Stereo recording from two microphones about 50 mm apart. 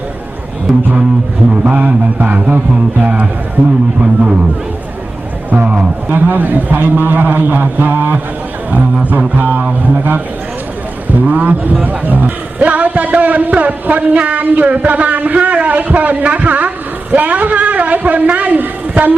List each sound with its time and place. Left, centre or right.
0.7 s double bass: centre
1.6 s a man's voice: right
5.5 s a man's voice: right
11.3 s a man's voice: right